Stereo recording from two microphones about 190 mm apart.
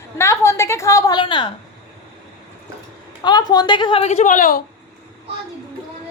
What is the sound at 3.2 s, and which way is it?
A woman's voice, 20° left (ahead or behind).